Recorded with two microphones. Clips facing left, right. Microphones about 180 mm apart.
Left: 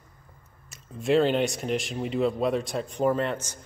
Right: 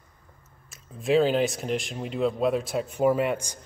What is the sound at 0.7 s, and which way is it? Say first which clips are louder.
Speech: even; centre (ahead or behind).